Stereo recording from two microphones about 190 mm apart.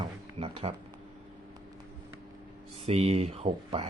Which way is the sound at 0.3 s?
30° right (ahead or behind).